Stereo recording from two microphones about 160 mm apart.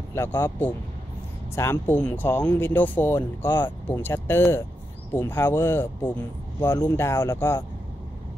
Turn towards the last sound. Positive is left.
turn(degrees=15)  # may be behind; listen again after turning